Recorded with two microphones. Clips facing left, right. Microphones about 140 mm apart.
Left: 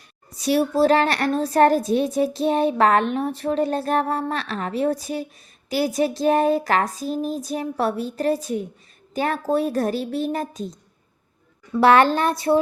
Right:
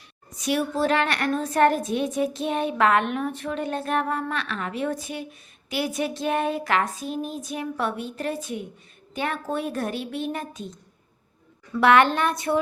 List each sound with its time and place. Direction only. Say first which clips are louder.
0.3 s a woman's voice: left 5 dB; 35° left (ahead or behind)